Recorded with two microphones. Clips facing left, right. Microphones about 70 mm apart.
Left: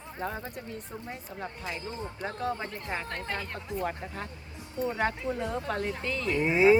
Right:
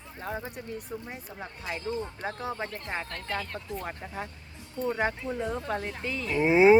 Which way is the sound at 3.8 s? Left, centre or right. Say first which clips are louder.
Left 2 dB; centre.